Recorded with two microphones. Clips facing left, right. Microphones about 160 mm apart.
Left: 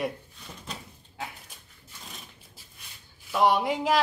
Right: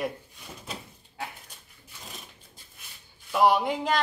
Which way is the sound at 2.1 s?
Centre (ahead or behind).